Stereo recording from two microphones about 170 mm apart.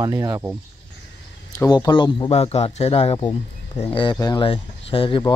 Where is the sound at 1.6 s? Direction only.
20° left (ahead or behind).